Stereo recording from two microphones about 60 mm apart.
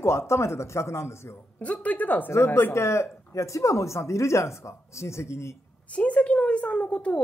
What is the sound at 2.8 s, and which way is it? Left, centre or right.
Speech, left.